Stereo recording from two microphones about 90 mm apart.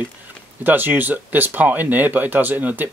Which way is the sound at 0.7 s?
20° right (ahead or behind).